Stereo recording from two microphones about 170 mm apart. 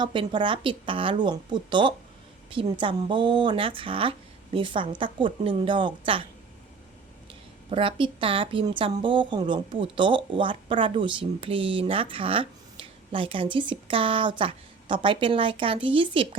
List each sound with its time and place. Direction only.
0.0 s speech: 30° right (ahead or behind)
7.7 s a woman's voice: 30° right (ahead or behind)